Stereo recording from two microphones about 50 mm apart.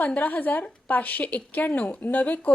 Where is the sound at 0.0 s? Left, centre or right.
Left.